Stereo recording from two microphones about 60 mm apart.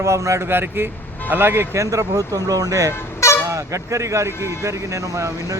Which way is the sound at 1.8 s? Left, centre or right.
Right.